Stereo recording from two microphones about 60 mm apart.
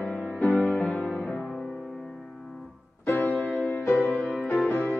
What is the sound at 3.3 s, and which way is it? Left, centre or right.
Music, left.